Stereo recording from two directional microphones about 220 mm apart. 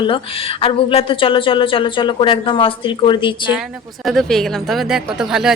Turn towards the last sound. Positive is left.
turn(degrees=-5)  # may be behind; listen again after turning